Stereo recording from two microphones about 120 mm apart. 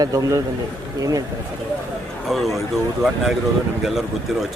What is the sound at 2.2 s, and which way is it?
Speech, centre (ahead or behind).